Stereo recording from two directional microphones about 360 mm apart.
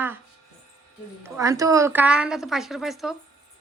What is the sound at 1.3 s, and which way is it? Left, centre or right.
A woman's voice, centre.